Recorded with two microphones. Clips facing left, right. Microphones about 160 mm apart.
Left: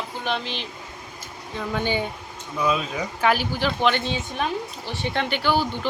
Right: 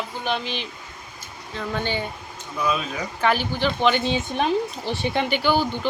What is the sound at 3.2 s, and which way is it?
Speech, 5° left (ahead or behind).